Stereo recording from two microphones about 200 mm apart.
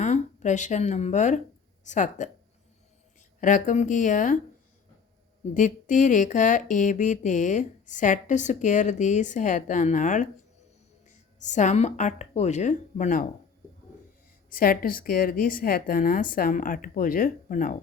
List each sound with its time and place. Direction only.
0.0 s speech: 35° left (ahead or behind)
3.4 s speech: 40° left (ahead or behind)
5.5 s speech: 40° left (ahead or behind)
11.4 s speech: 35° left (ahead or behind)
14.5 s a woman's voice: 45° left (ahead or behind)